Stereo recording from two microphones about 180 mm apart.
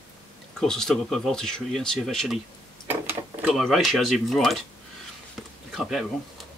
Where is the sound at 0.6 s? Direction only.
Centre (ahead or behind).